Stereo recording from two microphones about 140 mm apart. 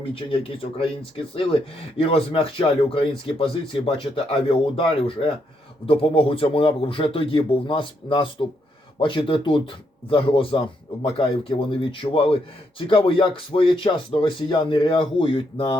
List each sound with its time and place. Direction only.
0.0 s speech: 40° left (ahead or behind)
2.0 s speech: 40° left (ahead or behind)